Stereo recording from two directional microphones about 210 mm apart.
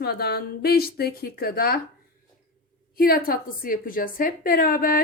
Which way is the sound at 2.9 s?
45° left (ahead or behind).